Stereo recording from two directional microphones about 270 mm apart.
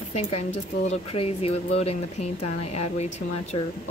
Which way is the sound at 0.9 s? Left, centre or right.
Left.